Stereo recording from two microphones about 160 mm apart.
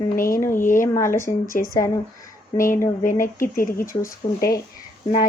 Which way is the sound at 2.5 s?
60° left (ahead or behind).